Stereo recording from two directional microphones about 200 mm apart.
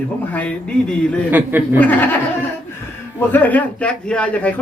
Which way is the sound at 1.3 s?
10° right (ahead or behind).